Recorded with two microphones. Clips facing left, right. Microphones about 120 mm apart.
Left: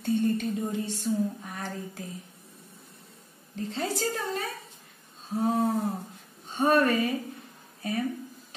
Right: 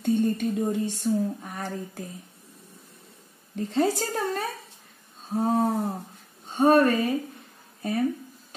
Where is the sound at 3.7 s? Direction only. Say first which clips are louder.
Right 6 dB; 45° right (ahead or behind).